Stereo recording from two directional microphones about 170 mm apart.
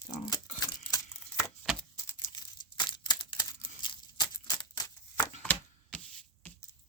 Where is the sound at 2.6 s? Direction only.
25° left (ahead or behind).